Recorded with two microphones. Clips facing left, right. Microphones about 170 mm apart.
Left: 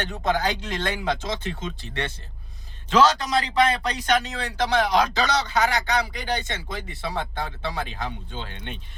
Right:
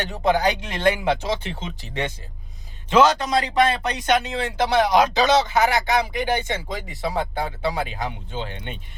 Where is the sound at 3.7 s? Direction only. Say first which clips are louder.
Right 2 dB; 25° right (ahead or behind).